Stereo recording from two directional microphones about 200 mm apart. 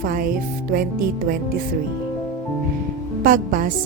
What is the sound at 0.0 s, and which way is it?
Music, 45° right (ahead or behind).